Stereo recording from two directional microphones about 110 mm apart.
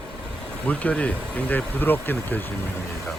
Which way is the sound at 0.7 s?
15° left (ahead or behind).